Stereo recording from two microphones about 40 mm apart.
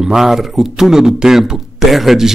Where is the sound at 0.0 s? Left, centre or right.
Centre.